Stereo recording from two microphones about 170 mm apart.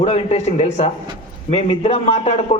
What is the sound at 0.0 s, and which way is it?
A man's voice, 35° left (ahead or behind).